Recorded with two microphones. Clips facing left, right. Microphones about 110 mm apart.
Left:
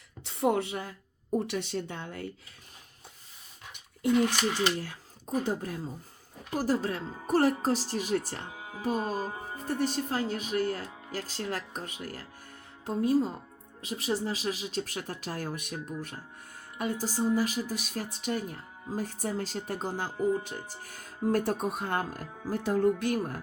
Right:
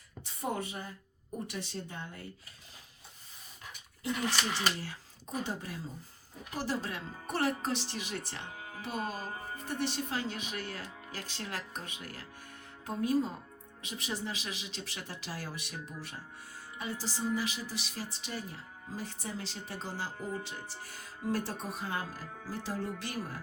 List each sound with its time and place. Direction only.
0.3 s speech: 75° left (ahead or behind)
4.8 s speech: 50° left (ahead or behind)
8.5 s music: 15° left (ahead or behind)
8.8 s speech: 40° left (ahead or behind)
9.3 s speech: 15° left (ahead or behind)
9.6 s speech: 40° left (ahead or behind)
12.8 s a woman's voice: 30° left (ahead or behind); by 23.4 s 55° left (ahead or behind)